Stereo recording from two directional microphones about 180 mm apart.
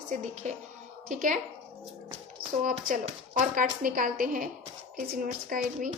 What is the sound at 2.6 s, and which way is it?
A woman's voice, 45° right (ahead or behind).